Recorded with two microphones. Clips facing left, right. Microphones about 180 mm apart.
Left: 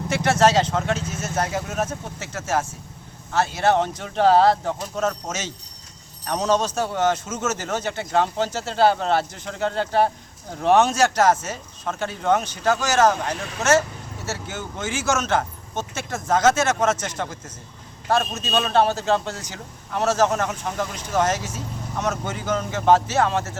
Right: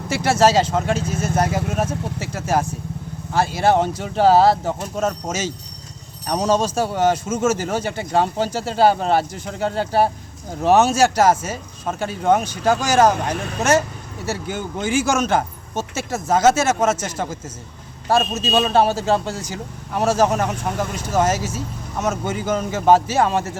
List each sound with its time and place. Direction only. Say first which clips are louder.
0.1 s a man's voice: right 2 dB; 10° right (ahead or behind)